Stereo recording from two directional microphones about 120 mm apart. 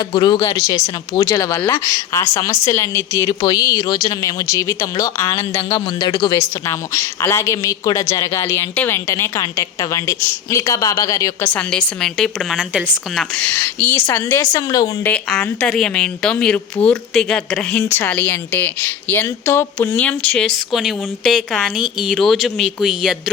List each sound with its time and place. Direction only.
0.0 s a man's voice: 40° left (ahead or behind)
5.7 s a man's voice: 40° left (ahead or behind)
6.3 s speech: 25° left (ahead or behind)
11.4 s a woman's voice: 10° left (ahead or behind)
13.3 s speech: 15° left (ahead or behind)
15.3 s a woman's voice: 5° left (ahead or behind)
17.8 s a woman's voice: 20° left (ahead or behind); by 23.1 s 5° right (ahead or behind)